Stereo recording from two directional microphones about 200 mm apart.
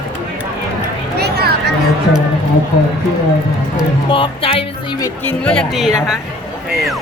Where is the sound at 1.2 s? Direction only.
55° right (ahead or behind).